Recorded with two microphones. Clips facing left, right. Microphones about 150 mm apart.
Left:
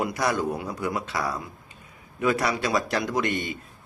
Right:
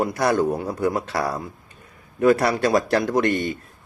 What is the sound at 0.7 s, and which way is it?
A man's voice, 55° right (ahead or behind).